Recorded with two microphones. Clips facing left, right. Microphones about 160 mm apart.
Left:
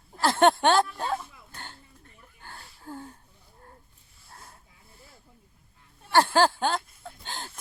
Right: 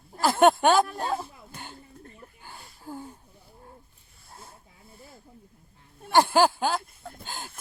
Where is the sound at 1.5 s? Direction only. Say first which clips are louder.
Right 3 dB; 10° right (ahead or behind).